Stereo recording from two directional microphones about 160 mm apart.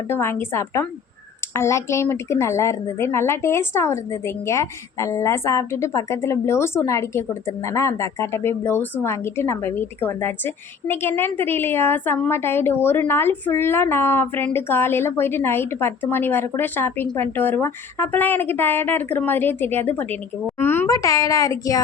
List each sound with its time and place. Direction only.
0.1 s speech: 15° left (ahead or behind)